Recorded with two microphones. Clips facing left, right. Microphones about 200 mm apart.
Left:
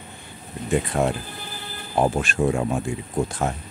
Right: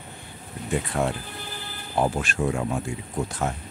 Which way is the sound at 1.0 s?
25° left (ahead or behind).